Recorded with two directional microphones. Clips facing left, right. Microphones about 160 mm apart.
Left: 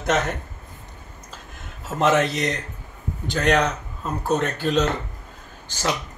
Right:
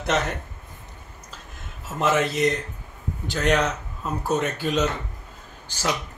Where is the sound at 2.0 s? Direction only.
5° right (ahead or behind).